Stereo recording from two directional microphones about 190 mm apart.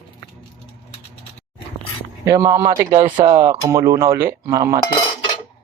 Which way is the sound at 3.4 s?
15° right (ahead or behind).